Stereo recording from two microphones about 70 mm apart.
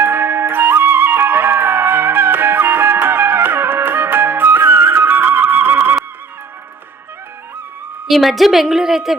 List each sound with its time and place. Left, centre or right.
0.0 s flute: right
8.0 s a woman's voice: centre